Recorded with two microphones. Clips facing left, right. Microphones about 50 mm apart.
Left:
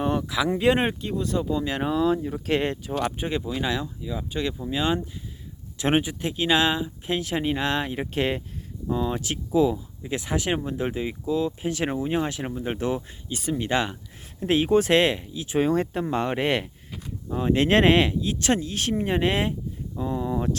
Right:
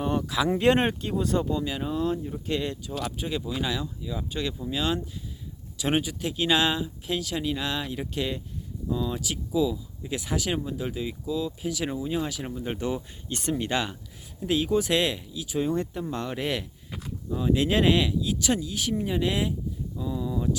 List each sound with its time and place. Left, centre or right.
0.0 s a sound: left
0.4 s speech: centre
1.7 s speech: left
2.6 s speech: left
3.0 s speech: left
3.8 s speech: centre
7.2 s speech: left
10.3 s speech: left
10.6 s speech: left; by 13.0 s centre
13.3 s speech: centre
13.7 s speech: left
14.4 s speech: left
15.5 s speech: left
17.2 s speech: left